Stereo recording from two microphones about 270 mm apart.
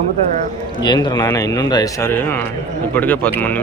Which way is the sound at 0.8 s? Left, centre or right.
Centre.